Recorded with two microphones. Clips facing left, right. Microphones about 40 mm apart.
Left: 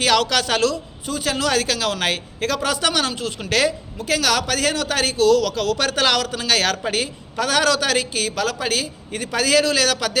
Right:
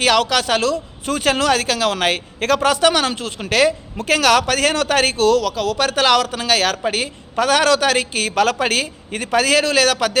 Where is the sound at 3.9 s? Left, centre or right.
Right.